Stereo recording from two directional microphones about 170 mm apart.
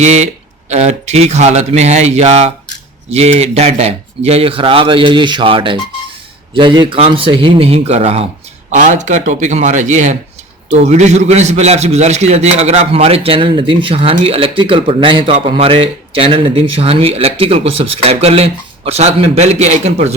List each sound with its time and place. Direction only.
0.0 s a man's voice: 40° right (ahead or behind)